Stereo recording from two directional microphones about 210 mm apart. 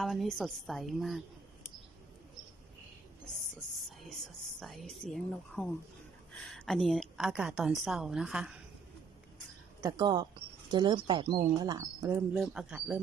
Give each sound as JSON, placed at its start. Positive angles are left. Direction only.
{"t": 0.0, "sound": "a woman's voice", "side_deg": 0}
{"t": 4.6, "sound": "a woman's voice", "side_deg": 0}
{"t": 9.8, "sound": "speech", "side_deg": -15}
{"t": 12.3, "sound": "a woman's voice", "side_deg": -5}